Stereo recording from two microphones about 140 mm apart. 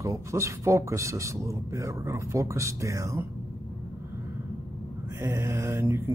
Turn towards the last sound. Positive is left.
turn(degrees=-15)  # may be behind; listen again after turning